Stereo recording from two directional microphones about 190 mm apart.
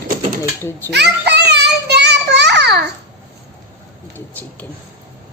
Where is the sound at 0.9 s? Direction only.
60° right (ahead or behind).